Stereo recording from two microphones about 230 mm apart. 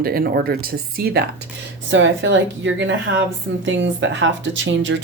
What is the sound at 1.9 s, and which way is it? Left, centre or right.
A woman's voice, right.